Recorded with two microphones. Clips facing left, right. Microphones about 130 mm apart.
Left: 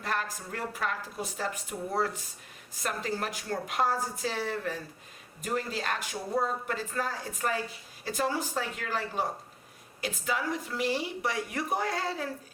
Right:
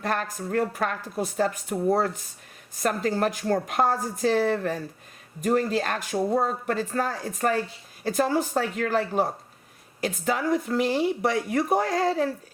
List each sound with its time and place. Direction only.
0.0 s speech: 50° right (ahead or behind)
2.8 s speech: 45° right (ahead or behind)